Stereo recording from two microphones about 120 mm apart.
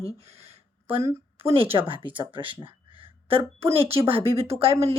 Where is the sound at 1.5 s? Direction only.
50° right (ahead or behind).